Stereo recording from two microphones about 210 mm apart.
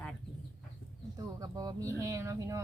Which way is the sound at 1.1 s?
20° right (ahead or behind).